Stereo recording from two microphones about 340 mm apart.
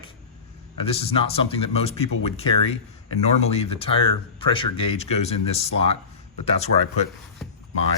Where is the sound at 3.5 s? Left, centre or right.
Centre.